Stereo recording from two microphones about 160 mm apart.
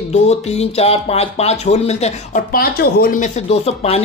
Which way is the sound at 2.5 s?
70° left (ahead or behind).